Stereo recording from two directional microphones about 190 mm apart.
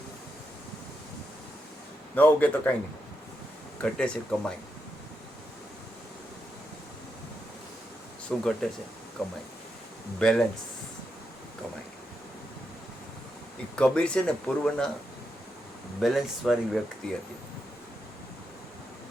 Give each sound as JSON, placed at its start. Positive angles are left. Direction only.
{"t": 2.1, "sound": "a man's voice", "side_deg": 10}
{"t": 3.8, "sound": "speech", "side_deg": 5}
{"t": 8.3, "sound": "speech", "side_deg": 5}
{"t": 13.7, "sound": "speech", "side_deg": 5}
{"t": 16.0, "sound": "speech", "side_deg": 0}